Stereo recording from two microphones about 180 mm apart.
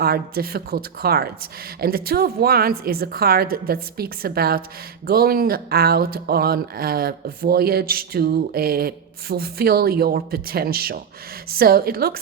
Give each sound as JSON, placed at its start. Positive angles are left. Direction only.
{"t": 0.0, "sound": "speech", "side_deg": -60}